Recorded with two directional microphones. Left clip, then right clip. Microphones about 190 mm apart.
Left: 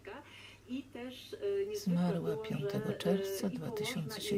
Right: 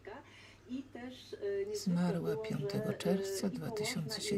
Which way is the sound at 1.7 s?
Centre (ahead or behind).